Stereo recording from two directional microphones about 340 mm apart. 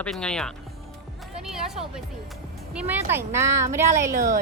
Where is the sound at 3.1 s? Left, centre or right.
Centre.